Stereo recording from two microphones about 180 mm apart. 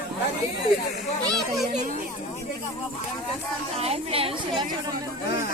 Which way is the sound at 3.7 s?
35° right (ahead or behind).